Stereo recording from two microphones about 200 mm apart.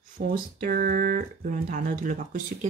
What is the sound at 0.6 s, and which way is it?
Speech, 45° right (ahead or behind).